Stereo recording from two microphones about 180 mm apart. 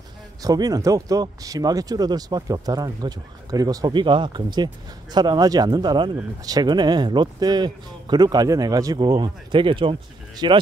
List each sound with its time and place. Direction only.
0.4 s speech: 20° right (ahead or behind)